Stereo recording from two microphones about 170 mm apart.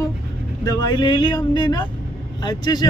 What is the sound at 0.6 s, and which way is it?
Speech, 20° left (ahead or behind).